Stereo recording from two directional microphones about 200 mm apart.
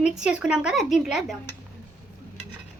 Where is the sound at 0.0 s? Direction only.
5° right (ahead or behind).